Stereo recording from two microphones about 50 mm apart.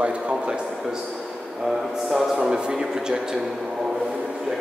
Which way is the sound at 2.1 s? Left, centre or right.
Centre.